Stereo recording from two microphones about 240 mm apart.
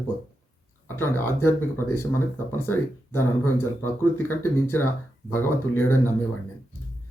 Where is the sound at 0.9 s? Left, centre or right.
Centre.